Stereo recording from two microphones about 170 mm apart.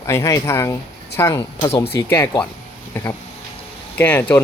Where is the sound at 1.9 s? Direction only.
15° left (ahead or behind).